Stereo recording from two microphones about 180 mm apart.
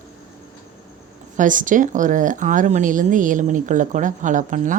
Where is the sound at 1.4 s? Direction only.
45° right (ahead or behind).